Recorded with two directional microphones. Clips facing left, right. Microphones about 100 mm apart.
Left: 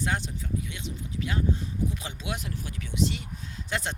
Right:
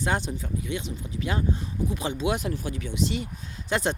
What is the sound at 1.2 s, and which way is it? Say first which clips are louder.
Speech: right 1 dB; 30° right (ahead or behind).